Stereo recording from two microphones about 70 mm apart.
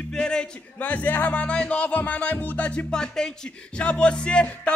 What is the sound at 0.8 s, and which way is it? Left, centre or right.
Music, left.